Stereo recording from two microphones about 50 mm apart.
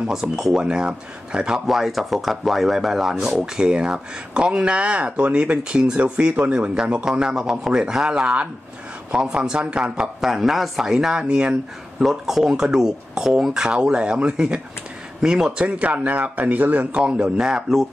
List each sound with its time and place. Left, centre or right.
0.1 s speech: centre
1.7 s speech: centre; by 6.7 s right
6.7 s speech: centre
12.0 s speech: centre
15.6 s speech: right
16.9 s speech: right